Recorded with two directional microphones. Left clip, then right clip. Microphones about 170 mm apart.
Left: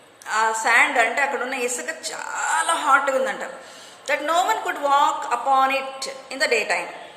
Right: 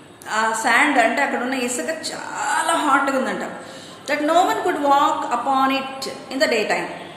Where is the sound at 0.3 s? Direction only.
35° left (ahead or behind).